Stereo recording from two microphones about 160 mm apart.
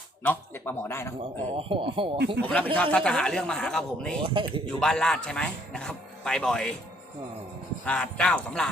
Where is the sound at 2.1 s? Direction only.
90° right.